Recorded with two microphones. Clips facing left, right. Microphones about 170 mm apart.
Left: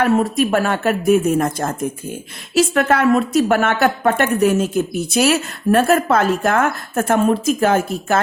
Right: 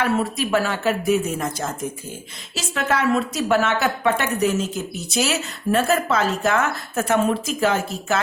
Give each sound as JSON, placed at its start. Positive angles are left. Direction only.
{"t": 0.0, "sound": "a woman's voice", "side_deg": 50}